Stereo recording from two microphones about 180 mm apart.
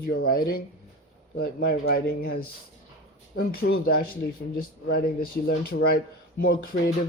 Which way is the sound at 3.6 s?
70° left (ahead or behind).